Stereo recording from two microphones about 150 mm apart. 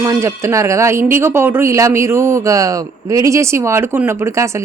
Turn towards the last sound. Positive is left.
turn(degrees=-20)  # may be behind; listen again after turning